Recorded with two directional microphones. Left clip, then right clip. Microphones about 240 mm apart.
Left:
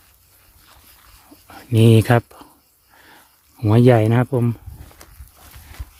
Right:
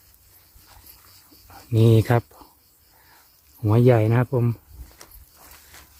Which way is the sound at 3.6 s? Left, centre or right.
Left.